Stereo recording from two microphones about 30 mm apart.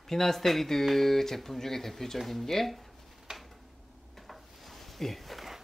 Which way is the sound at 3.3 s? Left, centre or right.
Right.